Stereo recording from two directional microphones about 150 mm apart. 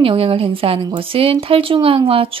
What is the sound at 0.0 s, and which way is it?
Speech, 40° right (ahead or behind).